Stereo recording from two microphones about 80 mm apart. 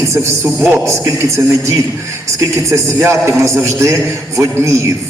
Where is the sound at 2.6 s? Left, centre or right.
Right.